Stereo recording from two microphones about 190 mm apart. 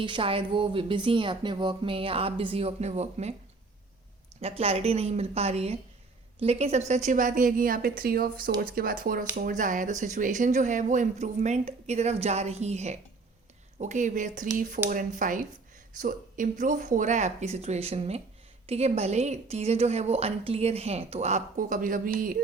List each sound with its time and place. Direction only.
0.0 s a woman's voice: 25° right (ahead or behind)
4.4 s a woman's voice: 30° right (ahead or behind); by 22.4 s 45° right (ahead or behind)